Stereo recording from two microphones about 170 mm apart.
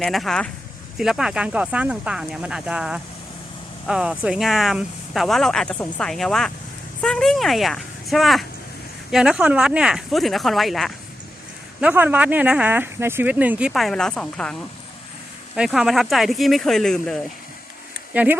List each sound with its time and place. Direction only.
0.0 s speech: centre (ahead or behind)
15.5 s speech: 5° right (ahead or behind)
18.1 s speech: 10° right (ahead or behind)